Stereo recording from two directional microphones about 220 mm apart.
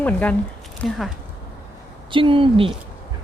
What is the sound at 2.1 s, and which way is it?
Speech, 25° right (ahead or behind).